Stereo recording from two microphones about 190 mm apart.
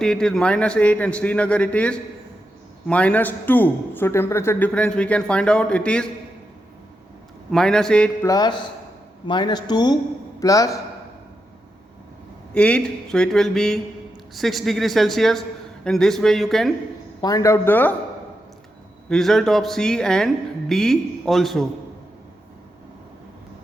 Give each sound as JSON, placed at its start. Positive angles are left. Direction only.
{"t": 0.0, "sound": "a woman's voice", "side_deg": 5}
{"t": 7.5, "sound": "a woman's voice", "side_deg": 5}
{"t": 8.2, "sound": "a man's voice", "side_deg": 20}
{"t": 12.5, "sound": "a woman's voice", "side_deg": 5}
{"t": 17.2, "sound": "a man's voice", "side_deg": 20}
{"t": 19.0, "sound": "a woman's voice", "side_deg": 5}